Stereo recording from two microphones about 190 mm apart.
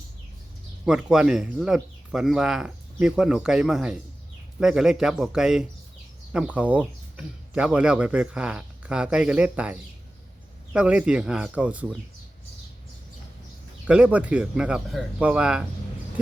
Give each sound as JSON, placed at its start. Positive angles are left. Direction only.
{"t": 0.9, "sound": "speech", "side_deg": -5}
{"t": 10.8, "sound": "speech", "side_deg": -5}
{"t": 13.8, "sound": "speech", "side_deg": -5}